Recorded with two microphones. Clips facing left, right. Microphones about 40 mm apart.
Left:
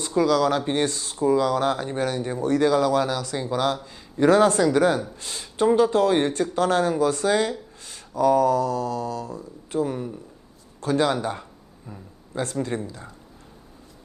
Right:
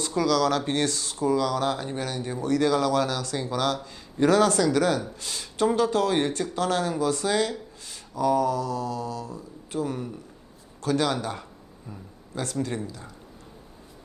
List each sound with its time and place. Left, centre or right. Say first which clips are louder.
0.0 s speech: left 3 dB; left